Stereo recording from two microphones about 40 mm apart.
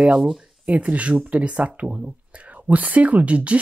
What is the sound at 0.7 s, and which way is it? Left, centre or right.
Speech, right.